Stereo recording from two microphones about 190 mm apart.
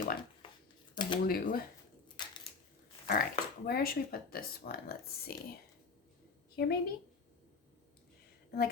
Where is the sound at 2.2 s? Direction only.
25° left (ahead or behind).